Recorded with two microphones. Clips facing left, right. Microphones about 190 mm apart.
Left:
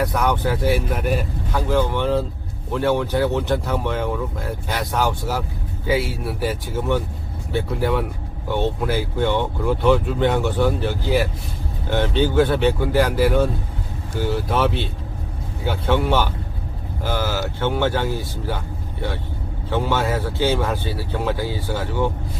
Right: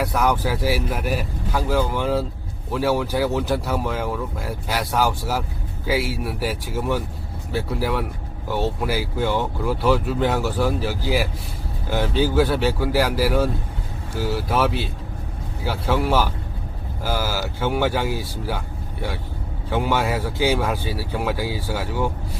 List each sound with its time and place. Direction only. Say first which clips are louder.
0.0 s speech: left 1 dB; 5° right (ahead or behind)
19.7 s speech: even; 10° right (ahead or behind)